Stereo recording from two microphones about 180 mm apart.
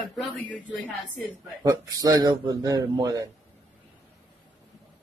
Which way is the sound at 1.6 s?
20° right (ahead or behind).